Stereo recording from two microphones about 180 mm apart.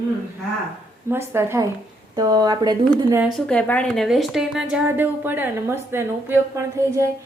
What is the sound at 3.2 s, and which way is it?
A woman's voice, centre (ahead or behind).